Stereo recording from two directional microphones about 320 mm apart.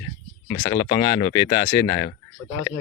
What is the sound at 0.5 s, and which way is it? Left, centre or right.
Speech, centre.